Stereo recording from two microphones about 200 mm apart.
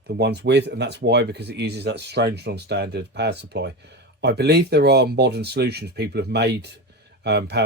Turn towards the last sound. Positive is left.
turn(degrees=-55)  # may be behind; listen again after turning